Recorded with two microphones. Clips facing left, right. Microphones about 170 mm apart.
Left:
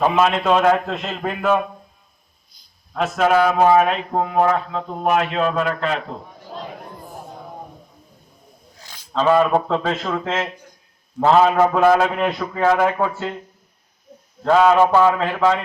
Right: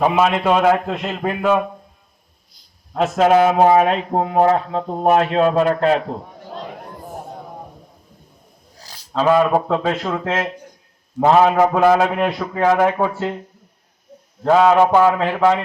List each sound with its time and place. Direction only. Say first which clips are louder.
0.0 s a man's voice: right 1 dB; 10° right (ahead or behind)
2.9 s speech: right 3 dB; 25° right (ahead or behind)
8.7 s a sound: right 3 dB; 35° right (ahead or behind)
9.1 s a man's voice: right 1 dB; 10° right (ahead or behind)
14.4 s a man's voice: right 1 dB; 15° right (ahead or behind)